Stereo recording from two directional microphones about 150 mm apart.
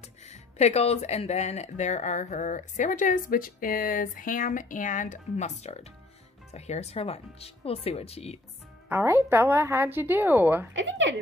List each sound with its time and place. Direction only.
0.3 s speech: 50° left (ahead or behind)
8.8 s a woman's voice: 15° right (ahead or behind)